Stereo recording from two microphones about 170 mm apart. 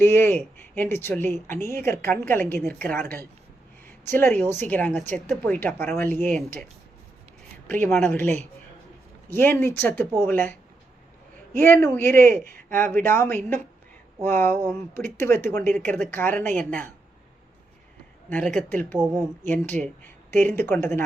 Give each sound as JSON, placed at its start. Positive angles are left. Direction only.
{"t": 0.0, "sound": "a woman's voice", "side_deg": 15}
{"t": 7.7, "sound": "a woman's voice", "side_deg": 10}
{"t": 11.6, "sound": "a woman's voice", "side_deg": 15}
{"t": 12.0, "sound": "speech", "side_deg": -55}
{"t": 12.6, "sound": "a woman's voice", "side_deg": 10}
{"t": 18.3, "sound": "a woman's voice", "side_deg": 5}